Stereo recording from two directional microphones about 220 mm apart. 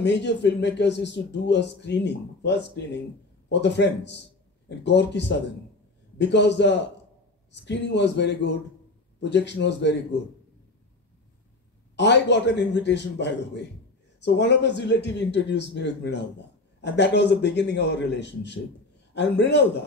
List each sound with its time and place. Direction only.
0.0 s a man's voice: 50° left (ahead or behind)
12.0 s a man's voice: 50° left (ahead or behind)